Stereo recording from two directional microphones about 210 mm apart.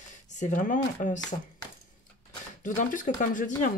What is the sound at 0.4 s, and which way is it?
Speech, 40° left (ahead or behind).